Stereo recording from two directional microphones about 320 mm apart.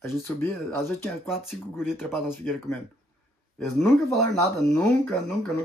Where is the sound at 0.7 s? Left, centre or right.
Centre.